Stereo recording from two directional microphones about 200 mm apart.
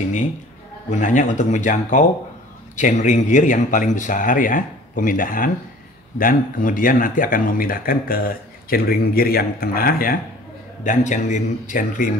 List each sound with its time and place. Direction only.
0.8 s speech: 40° left (ahead or behind)